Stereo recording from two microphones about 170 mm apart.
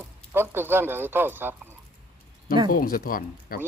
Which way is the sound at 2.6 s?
55° left (ahead or behind).